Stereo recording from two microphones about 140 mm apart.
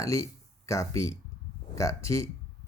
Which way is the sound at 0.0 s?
20° left (ahead or behind).